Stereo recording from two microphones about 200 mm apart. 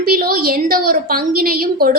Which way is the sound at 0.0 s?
45° right (ahead or behind).